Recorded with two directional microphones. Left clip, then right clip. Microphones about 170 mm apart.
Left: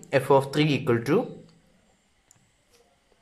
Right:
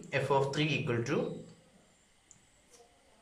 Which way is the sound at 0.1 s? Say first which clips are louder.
Left 9 dB; 45° left (ahead or behind).